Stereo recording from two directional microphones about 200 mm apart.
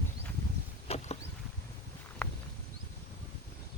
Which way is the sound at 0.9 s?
35° left (ahead or behind).